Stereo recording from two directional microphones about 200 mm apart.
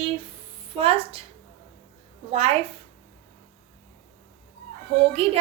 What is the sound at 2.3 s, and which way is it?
Speech, 30° right (ahead or behind).